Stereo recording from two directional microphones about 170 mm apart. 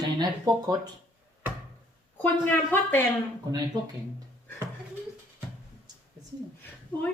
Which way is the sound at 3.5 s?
25° right (ahead or behind).